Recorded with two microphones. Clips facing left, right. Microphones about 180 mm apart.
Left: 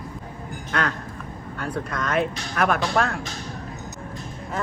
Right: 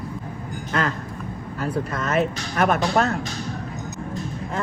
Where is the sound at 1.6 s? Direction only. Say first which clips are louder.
Right 3 dB; 5° right (ahead or behind).